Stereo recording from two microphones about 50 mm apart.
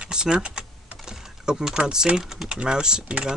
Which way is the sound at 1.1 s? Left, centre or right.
Centre.